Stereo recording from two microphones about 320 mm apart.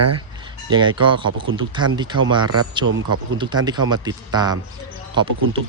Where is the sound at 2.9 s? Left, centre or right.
Right.